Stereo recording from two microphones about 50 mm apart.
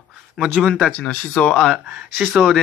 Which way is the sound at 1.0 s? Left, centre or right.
Left.